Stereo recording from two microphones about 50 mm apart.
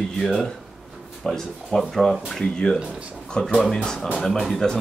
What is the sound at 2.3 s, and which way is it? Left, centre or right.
Speech, centre.